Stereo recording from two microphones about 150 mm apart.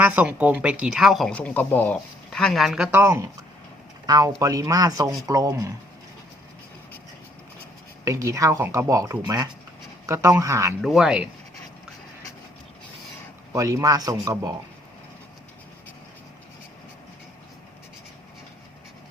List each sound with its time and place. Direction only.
0.0 s speech: 10° right (ahead or behind)
2.9 s speech: 20° right (ahead or behind)
8.0 s speech: 20° right (ahead or behind)
10.8 s speech: centre (ahead or behind)
13.5 s speech: 20° right (ahead or behind)